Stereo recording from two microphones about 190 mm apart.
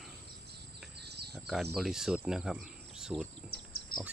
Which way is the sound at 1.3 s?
Centre (ahead or behind).